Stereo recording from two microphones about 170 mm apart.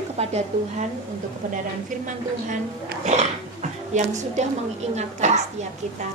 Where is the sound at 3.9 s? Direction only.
45° right (ahead or behind).